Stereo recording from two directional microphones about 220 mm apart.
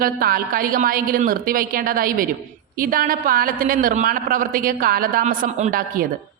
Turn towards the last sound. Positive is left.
turn(degrees=-35)  # may be behind; listen again after turning